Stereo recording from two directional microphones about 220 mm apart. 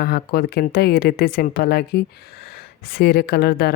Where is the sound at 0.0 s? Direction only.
45° left (ahead or behind).